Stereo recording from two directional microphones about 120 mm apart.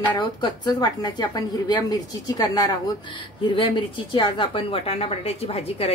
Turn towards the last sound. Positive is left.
turn(degrees=55)  # may be behind; listen again after turning